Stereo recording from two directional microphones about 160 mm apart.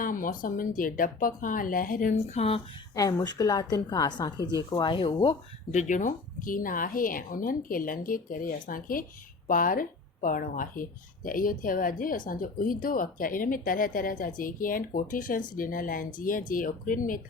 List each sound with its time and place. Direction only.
0.0 s a woman's voice: 60° left (ahead or behind)
2.1 s speech: 40° left (ahead or behind)
2.9 s a woman's voice: 25° left (ahead or behind)
5.7 s a woman's voice: 50° left (ahead or behind)